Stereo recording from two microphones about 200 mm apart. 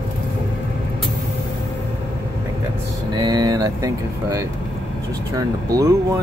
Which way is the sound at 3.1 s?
20° right (ahead or behind).